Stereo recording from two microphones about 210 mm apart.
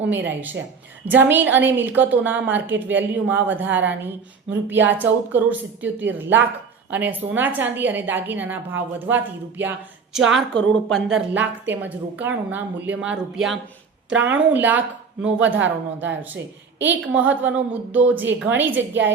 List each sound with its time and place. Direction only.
1.0 s a woman's voice: 10° right (ahead or behind)
10.3 s a woman's voice: 5° left (ahead or behind)
16.7 s a woman's voice: 60° right (ahead or behind)
17.0 s a woman's voice: 5° right (ahead or behind)